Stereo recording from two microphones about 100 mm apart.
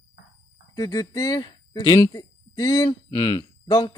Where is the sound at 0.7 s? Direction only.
40° left (ahead or behind).